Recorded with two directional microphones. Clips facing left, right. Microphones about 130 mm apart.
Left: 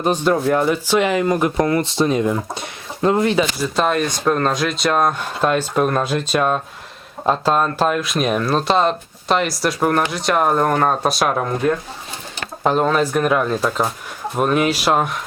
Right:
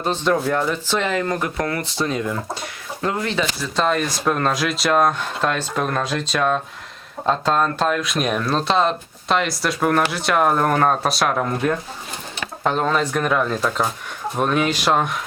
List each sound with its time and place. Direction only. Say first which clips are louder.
0.0 s speech: left 3 dB; 15° left (ahead or behind)
3.3 s speech: left 4 dB; 10° left (ahead or behind)